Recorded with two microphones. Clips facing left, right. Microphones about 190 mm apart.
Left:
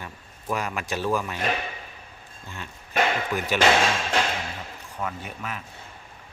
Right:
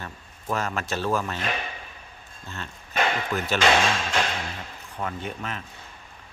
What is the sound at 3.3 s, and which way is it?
Speech, 10° left (ahead or behind).